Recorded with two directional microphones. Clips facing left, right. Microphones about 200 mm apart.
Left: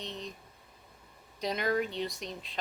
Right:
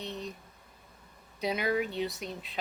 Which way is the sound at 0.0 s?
5° right (ahead or behind).